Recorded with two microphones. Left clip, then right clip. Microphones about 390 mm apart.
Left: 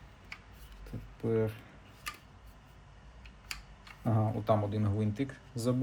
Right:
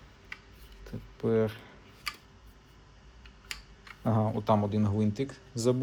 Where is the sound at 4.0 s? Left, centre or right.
Centre.